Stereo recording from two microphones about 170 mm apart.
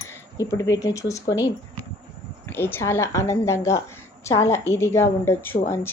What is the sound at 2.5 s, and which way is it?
A woman's voice, 10° left (ahead or behind).